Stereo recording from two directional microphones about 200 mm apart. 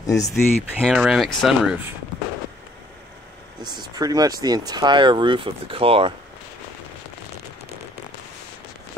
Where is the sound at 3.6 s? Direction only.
20° right (ahead or behind).